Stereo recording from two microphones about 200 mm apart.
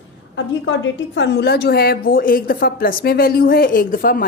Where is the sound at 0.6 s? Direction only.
65° left (ahead or behind).